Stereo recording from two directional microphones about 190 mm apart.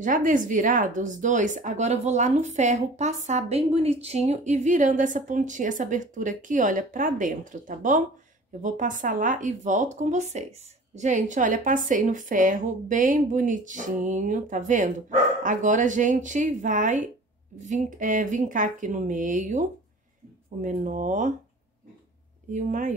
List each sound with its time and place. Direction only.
0.0 s a woman's voice: 45° right (ahead or behind)
20.6 s a woman's voice: 40° right (ahead or behind)
22.5 s a woman's voice: 40° right (ahead or behind)